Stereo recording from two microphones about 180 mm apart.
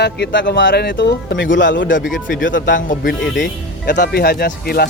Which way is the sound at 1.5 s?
90° left.